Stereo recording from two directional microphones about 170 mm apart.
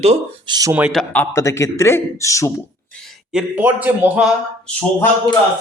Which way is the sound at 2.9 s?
Centre (ahead or behind).